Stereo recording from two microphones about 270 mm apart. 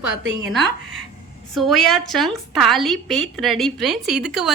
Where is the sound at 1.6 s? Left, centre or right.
Centre.